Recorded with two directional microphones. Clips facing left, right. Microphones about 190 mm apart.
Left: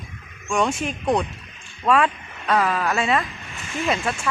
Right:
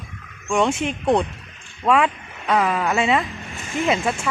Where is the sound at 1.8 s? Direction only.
15° right (ahead or behind).